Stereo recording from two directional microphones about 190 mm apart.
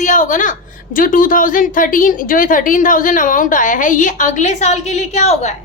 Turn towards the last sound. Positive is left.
turn(degrees=35)  # may be behind; listen again after turning